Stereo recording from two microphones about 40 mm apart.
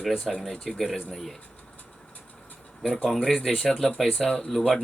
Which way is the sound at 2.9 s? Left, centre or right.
Centre.